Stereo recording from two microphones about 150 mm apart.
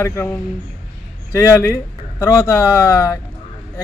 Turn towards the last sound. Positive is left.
turn(degrees=15)  # may be behind; listen again after turning